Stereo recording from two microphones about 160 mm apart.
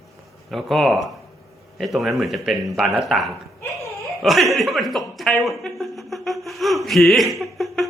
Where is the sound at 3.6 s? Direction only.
20° left (ahead or behind).